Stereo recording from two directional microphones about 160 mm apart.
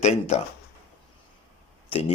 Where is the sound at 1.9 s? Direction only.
35° left (ahead or behind).